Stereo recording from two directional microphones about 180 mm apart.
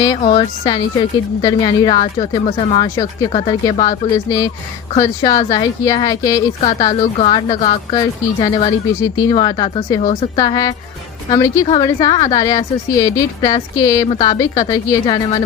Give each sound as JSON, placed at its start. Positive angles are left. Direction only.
{"t": 0.3, "sound": "speech", "side_deg": 25}
{"t": 7.0, "sound": "a woman's voice", "side_deg": 30}